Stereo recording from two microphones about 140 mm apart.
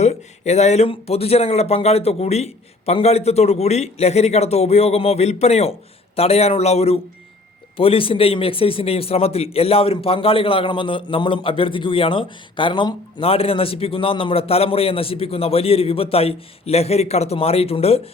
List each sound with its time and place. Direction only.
0.0 s a man's voice: 55° left (ahead or behind)